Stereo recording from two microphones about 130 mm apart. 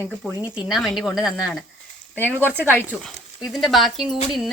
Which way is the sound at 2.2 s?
15° right (ahead or behind).